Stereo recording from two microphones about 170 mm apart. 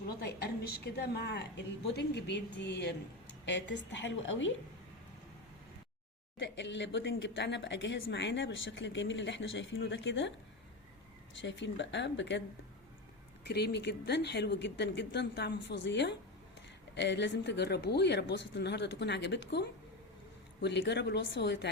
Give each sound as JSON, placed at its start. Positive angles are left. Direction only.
{"t": 0.2, "sound": "a woman's voice", "side_deg": 70}
{"t": 6.4, "sound": "a woman's voice", "side_deg": 90}
{"t": 11.3, "sound": "a woman's voice", "side_deg": 90}
{"t": 13.5, "sound": "a woman's voice", "side_deg": 75}